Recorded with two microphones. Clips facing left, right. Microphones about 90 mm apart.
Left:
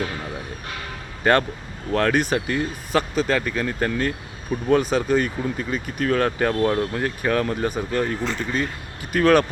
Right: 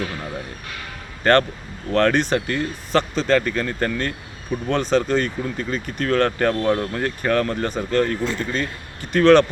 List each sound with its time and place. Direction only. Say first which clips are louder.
1.2 s speech: right 2 dB; 10° left (ahead or behind)